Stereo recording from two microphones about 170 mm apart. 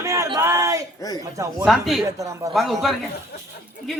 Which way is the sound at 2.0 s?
20° right (ahead or behind).